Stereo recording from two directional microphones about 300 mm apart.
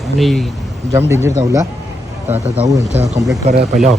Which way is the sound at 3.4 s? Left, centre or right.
Right.